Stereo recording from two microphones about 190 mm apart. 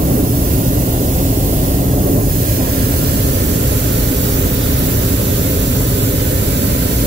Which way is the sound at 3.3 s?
60° right (ahead or behind).